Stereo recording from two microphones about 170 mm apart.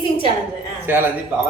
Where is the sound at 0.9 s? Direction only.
10° right (ahead or behind).